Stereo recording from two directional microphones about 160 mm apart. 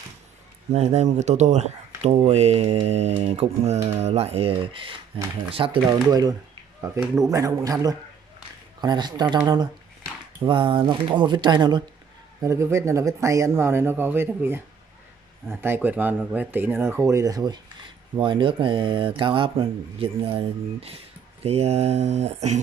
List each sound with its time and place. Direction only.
0.7 s speech: 45° right (ahead or behind); by 14.6 s 15° right (ahead or behind)
15.6 s speech: 10° right (ahead or behind); by 22.6 s 45° right (ahead or behind)